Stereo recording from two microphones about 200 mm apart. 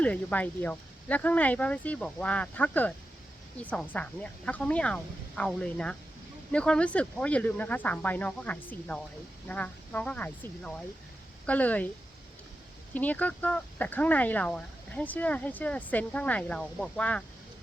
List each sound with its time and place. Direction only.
0.0 s speech: 5° left (ahead or behind)
12.9 s speech: 10° left (ahead or behind)